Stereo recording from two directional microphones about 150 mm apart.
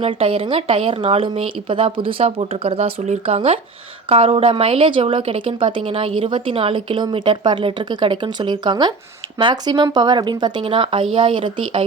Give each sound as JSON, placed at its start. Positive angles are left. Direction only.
{"t": 0.0, "sound": "a woman's voice", "side_deg": -35}